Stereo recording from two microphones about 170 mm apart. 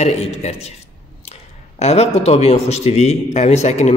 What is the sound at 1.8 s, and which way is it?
A man's voice, 40° left (ahead or behind).